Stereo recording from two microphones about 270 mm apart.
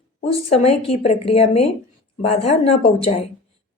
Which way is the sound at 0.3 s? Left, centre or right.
Left.